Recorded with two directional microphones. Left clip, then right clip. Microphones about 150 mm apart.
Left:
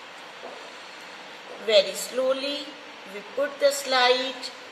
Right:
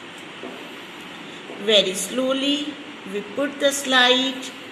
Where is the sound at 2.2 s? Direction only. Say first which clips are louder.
Even; 5° left (ahead or behind).